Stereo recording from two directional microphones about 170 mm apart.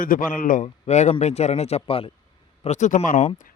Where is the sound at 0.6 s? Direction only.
40° left (ahead or behind).